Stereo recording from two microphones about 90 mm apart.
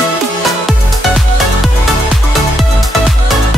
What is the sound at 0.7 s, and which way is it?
Music, centre (ahead or behind).